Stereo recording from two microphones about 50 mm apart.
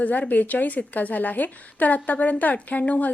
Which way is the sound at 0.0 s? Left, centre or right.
Left.